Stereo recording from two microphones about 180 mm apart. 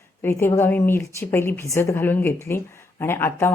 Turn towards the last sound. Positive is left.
turn(degrees=15)  # may be behind; listen again after turning